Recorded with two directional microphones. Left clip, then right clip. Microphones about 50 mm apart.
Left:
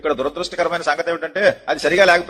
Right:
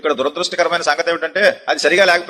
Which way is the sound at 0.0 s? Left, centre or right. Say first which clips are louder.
Right 3 dB; left.